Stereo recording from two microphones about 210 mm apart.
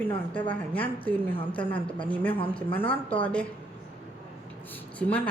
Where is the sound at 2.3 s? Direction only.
25° left (ahead or behind).